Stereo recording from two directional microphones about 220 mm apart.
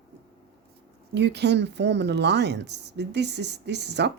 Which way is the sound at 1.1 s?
50° right (ahead or behind).